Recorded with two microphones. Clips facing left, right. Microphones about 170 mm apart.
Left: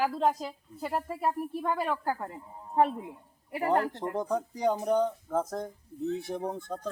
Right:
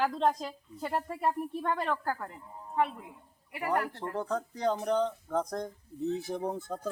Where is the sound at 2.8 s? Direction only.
40° left (ahead or behind).